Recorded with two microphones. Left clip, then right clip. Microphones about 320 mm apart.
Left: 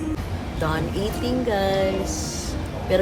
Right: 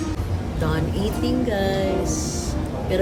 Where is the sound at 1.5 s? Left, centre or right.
Centre.